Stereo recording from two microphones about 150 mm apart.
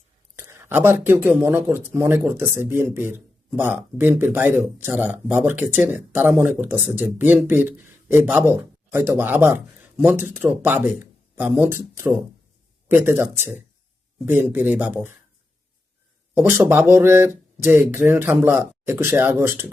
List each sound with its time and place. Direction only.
0.3 s speech: 15° right (ahead or behind)
16.3 s speech: 15° right (ahead or behind)